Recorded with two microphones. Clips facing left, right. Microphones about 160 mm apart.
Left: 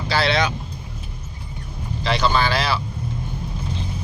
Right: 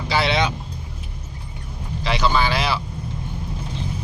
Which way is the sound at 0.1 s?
20° right (ahead or behind).